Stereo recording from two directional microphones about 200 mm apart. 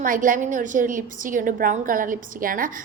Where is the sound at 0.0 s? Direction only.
40° right (ahead or behind).